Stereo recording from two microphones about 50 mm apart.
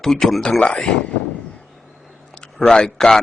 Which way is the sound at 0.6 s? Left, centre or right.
Centre.